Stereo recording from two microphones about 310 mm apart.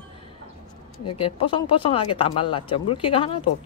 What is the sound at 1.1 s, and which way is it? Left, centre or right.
Speech, centre.